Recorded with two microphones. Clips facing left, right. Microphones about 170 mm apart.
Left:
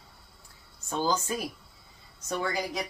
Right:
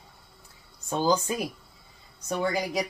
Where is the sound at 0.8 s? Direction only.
15° right (ahead or behind).